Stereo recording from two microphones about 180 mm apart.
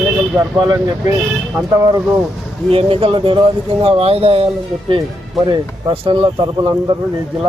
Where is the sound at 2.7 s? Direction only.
30° right (ahead or behind).